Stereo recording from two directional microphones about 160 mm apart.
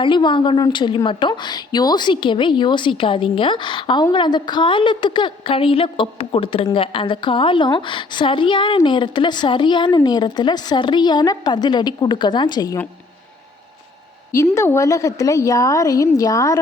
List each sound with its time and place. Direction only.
0.0 s a woman's voice: 30° left (ahead or behind)
14.5 s a woman's voice: 15° left (ahead or behind)